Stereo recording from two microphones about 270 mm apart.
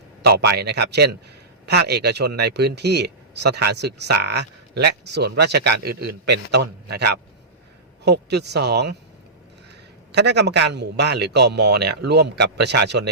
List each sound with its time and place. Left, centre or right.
0.4 s speech: right
10.1 s speech: right